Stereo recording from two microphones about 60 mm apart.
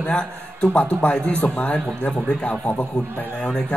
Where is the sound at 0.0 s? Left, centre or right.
Centre.